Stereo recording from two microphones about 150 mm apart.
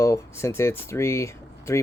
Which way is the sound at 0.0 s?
20° left (ahead or behind).